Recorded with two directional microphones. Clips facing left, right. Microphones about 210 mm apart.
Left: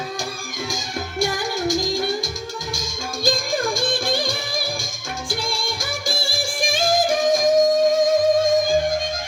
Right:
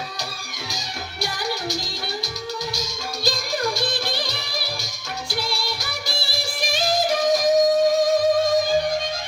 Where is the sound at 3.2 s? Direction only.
50° left (ahead or behind).